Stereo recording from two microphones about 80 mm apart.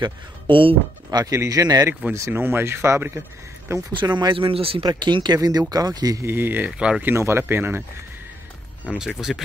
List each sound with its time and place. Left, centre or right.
0.0 s speech: right
1.2 s speech: right
2.1 s speech: right
3.9 s speech: right
6.2 s speech: right
8.9 s speech: centre